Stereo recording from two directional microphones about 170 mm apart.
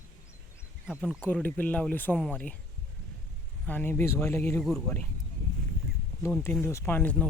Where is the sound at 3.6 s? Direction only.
10° left (ahead or behind).